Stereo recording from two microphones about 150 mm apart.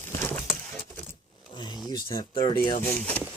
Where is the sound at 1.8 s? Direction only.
30° left (ahead or behind).